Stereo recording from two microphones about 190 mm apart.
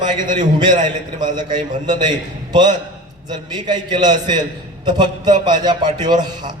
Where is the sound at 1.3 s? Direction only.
20° right (ahead or behind).